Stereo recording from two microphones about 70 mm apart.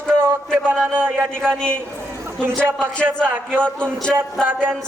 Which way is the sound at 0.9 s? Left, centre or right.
Right.